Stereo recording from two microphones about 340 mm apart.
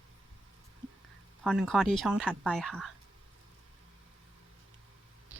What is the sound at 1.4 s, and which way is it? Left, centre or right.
Speech, centre.